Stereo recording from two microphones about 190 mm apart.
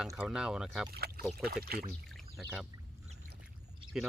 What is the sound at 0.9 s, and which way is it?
Speech, 55° right (ahead or behind).